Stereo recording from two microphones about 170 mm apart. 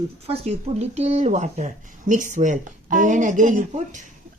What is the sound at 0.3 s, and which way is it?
Speech, 40° right (ahead or behind).